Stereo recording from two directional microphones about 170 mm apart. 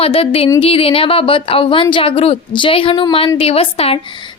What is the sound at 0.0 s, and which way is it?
A woman's voice, 35° left (ahead or behind).